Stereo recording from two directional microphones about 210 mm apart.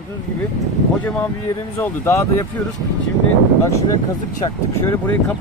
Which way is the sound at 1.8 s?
10° left (ahead or behind).